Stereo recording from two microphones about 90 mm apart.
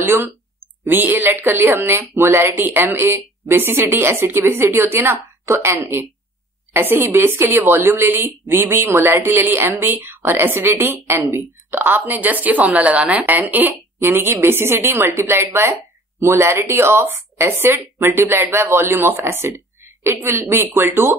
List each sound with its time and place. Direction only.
0.0 s a woman's voice: 25° right (ahead or behind)